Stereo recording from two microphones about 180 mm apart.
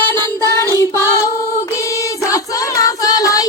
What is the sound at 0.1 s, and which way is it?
Child singing, 15° left (ahead or behind).